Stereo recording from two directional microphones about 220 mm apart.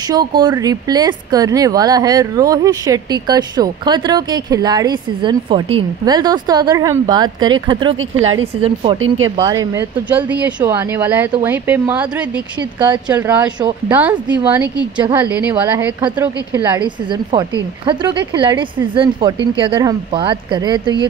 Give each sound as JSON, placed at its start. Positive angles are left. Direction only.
{"t": 0.1, "sound": "speech", "side_deg": -20}
{"t": 9.4, "sound": "speech", "side_deg": -15}
{"t": 13.1, "sound": "speech", "side_deg": -5}
{"t": 16.7, "sound": "speech", "side_deg": -20}